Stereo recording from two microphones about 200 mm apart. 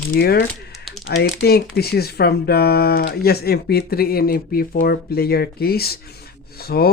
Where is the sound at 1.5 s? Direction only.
50° left (ahead or behind).